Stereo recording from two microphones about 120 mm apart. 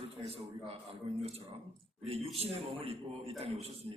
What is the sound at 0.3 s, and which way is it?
A man's voice, 55° right (ahead or behind).